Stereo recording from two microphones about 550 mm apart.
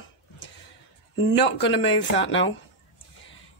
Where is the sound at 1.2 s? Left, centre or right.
Centre.